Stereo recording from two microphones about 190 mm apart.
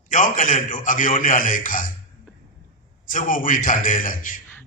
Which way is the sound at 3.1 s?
45° left (ahead or behind).